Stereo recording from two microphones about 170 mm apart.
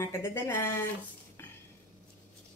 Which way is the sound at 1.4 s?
15° left (ahead or behind).